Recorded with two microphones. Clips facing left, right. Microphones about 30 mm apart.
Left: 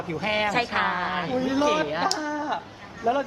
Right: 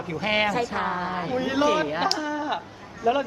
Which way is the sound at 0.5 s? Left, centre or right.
Left.